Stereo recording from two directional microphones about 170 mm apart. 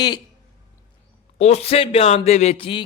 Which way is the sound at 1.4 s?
40° left (ahead or behind).